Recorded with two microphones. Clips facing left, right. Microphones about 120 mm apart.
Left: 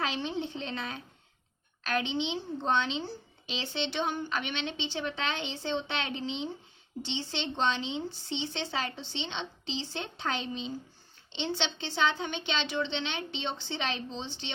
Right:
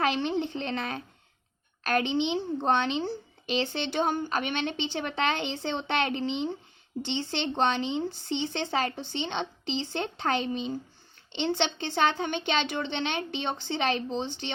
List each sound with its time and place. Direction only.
0.0 s a woman's voice: 60° right (ahead or behind)